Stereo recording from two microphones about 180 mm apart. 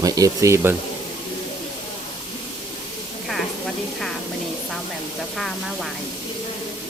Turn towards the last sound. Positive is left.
turn(degrees=0)  # may be behind; listen again after turning